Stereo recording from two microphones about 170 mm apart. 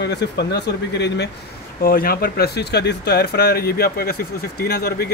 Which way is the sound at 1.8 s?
60° left (ahead or behind).